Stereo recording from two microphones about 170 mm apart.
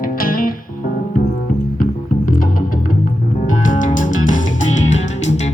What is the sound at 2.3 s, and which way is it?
Music, 55° left (ahead or behind).